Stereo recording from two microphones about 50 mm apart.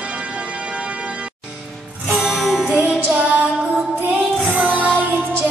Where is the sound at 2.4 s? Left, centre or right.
Centre.